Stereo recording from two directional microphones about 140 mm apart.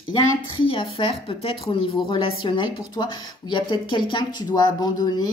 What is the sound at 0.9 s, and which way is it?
Speech, 45° left (ahead or behind).